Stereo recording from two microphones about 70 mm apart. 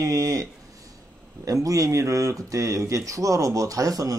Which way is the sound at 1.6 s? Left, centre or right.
Right.